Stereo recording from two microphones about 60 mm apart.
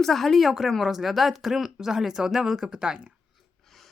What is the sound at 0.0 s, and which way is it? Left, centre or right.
Speech, centre.